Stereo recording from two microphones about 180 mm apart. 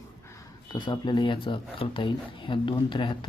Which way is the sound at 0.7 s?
25° left (ahead or behind).